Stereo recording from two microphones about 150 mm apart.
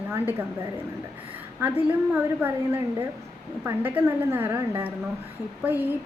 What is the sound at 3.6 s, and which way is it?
A woman's voice, 15° right (ahead or behind).